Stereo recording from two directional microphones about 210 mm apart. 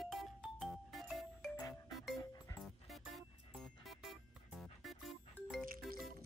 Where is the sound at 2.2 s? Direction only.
15° left (ahead or behind).